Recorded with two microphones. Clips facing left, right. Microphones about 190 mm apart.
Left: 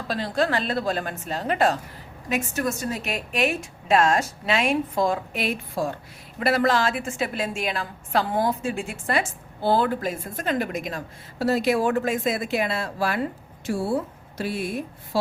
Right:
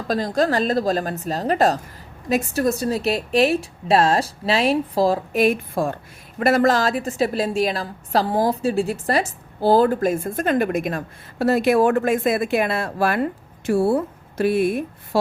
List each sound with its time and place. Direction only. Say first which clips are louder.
0.1 s a woman's voice: right 4 dB; 40° right (ahead or behind)